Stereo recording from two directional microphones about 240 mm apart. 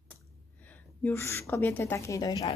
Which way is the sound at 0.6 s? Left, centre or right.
Centre.